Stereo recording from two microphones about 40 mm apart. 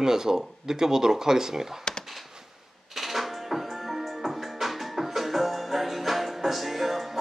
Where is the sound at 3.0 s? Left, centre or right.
Centre.